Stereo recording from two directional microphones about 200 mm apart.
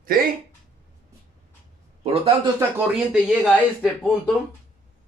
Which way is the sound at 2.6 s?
10° right (ahead or behind).